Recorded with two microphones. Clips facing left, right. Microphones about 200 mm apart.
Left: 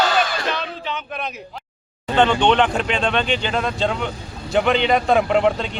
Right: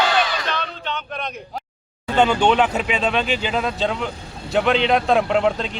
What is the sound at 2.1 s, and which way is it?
A man's voice, 10° right (ahead or behind).